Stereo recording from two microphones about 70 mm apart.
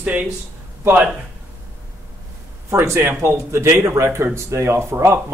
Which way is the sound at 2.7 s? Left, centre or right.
Right.